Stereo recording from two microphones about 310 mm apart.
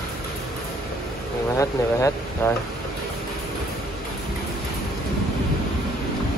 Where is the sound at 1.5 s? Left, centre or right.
Centre.